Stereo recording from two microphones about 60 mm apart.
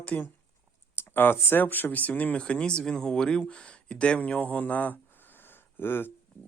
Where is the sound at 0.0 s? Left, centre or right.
Left.